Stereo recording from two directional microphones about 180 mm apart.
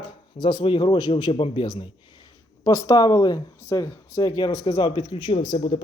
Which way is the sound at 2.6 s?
20° left (ahead or behind).